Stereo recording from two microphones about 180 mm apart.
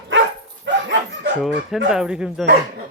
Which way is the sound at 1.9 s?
5° right (ahead or behind).